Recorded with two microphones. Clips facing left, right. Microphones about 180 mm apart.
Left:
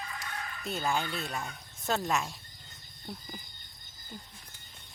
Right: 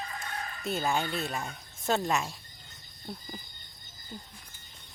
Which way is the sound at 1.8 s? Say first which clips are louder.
Right 2 dB; centre (ahead or behind).